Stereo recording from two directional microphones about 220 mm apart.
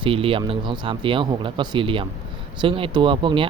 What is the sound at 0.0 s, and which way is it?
Speech, 25° right (ahead or behind).